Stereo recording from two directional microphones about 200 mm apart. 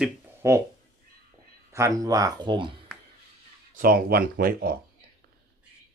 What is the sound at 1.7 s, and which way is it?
Speech, 15° right (ahead or behind).